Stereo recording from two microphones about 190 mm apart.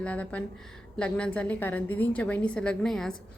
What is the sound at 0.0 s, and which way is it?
A woman's voice, 5° left (ahead or behind).